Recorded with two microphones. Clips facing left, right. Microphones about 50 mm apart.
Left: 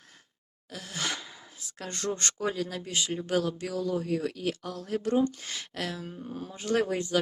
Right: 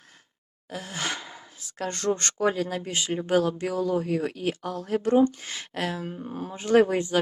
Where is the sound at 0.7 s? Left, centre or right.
Right.